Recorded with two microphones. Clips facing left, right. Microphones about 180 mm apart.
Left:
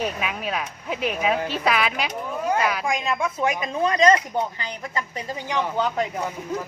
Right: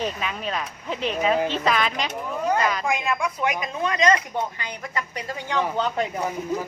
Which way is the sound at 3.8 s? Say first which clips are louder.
Left 3 dB; 35° left (ahead or behind).